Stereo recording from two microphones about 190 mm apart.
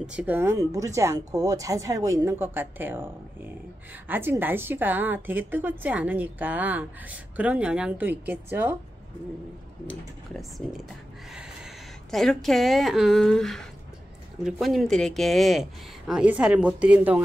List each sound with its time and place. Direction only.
0.0 s a woman's voice: 5° right (ahead or behind)
4.1 s a woman's voice: 10° right (ahead or behind)
9.8 s a woman's voice: centre (ahead or behind)